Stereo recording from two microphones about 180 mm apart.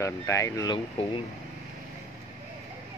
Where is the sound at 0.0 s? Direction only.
15° left (ahead or behind).